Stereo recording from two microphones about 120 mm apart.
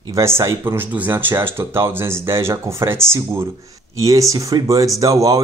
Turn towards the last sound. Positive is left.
turn(degrees=-25)  # may be behind; listen again after turning